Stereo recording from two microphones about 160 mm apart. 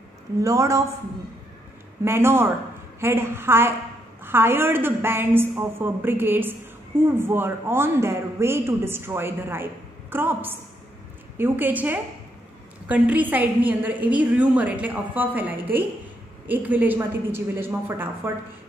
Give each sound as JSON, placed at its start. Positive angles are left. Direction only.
{"t": 0.4, "sound": "a woman's voice", "side_deg": -20}
{"t": 2.0, "sound": "a man's voice", "side_deg": -15}